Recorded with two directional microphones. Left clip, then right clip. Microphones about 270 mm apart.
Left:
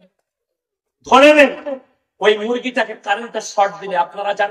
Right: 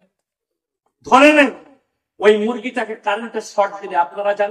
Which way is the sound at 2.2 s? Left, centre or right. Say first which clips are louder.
Right 1 dB; left.